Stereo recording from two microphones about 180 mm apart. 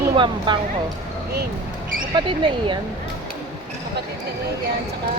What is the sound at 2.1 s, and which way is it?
Speech, 25° right (ahead or behind).